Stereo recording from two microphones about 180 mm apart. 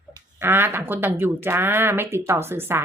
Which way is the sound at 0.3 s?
10° right (ahead or behind).